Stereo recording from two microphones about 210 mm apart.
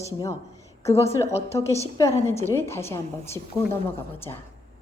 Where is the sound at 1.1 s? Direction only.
15° left (ahead or behind).